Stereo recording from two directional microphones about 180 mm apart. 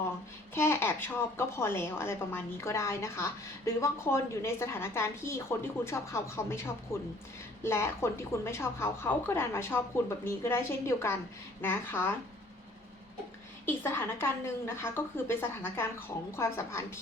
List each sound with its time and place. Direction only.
0.5 s a woman's voice: 15° left (ahead or behind)
13.7 s a woman's voice: 15° left (ahead or behind)